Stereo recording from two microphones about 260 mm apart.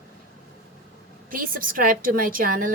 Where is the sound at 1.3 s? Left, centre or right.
Right.